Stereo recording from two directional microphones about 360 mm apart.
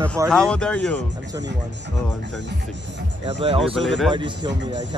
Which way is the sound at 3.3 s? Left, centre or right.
Centre.